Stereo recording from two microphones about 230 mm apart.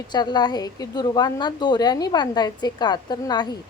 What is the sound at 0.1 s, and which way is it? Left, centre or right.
A woman's voice, centre.